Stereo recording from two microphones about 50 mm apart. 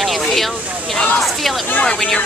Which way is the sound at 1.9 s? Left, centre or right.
Centre.